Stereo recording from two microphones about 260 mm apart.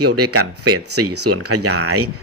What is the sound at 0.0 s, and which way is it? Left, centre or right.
Speech, right.